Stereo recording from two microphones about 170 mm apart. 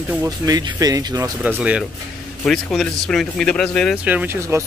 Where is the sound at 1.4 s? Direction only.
5° right (ahead or behind).